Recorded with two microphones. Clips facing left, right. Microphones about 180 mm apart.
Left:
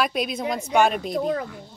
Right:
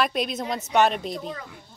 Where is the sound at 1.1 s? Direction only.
50° left (ahead or behind).